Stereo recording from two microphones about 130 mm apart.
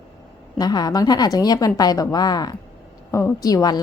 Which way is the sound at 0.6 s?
30° left (ahead or behind).